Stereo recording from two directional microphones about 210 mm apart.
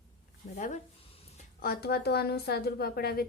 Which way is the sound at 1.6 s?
45° left (ahead or behind).